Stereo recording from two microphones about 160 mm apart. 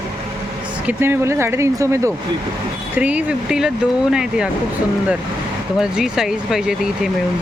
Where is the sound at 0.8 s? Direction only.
15° right (ahead or behind).